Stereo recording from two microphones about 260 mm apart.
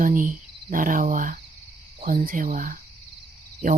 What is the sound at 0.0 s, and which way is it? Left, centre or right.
Cricket, right.